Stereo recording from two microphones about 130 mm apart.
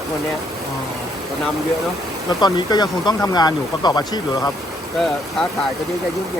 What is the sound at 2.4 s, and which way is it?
Speech, 35° left (ahead or behind).